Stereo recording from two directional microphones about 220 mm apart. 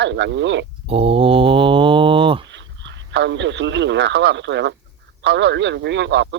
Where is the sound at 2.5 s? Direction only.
55° right (ahead or behind).